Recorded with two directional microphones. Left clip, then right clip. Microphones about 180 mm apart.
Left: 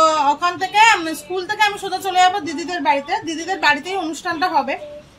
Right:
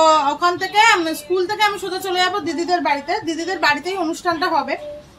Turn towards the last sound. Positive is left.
turn(degrees=0)  # may be behind; listen again after turning